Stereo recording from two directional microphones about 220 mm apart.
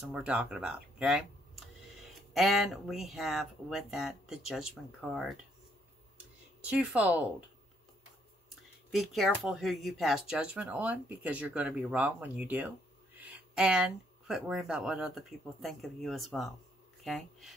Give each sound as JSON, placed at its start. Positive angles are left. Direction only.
{"t": 0.1, "sound": "speech", "side_deg": -5}
{"t": 6.6, "sound": "speech", "side_deg": -5}
{"t": 8.9, "sound": "speech", "side_deg": 0}